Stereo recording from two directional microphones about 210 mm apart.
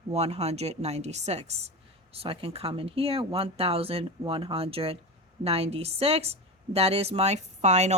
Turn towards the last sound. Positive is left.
turn(degrees=-35)  # may be behind; listen again after turning